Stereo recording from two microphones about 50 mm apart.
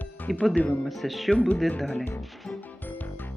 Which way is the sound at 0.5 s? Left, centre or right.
Left.